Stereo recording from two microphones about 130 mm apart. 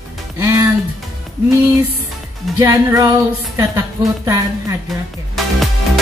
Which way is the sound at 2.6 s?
25° right (ahead or behind).